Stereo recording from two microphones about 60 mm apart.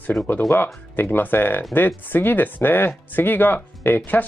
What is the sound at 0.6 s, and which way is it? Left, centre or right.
Speech, left.